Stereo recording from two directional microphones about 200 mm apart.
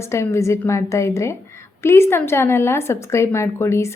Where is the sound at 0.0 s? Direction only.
15° left (ahead or behind).